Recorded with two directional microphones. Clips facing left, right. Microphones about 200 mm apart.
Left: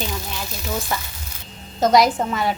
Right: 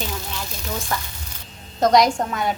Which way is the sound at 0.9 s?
5° left (ahead or behind).